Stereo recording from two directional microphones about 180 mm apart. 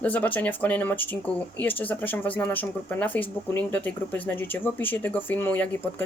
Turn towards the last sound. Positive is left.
turn(degrees=10)  # may be behind; listen again after turning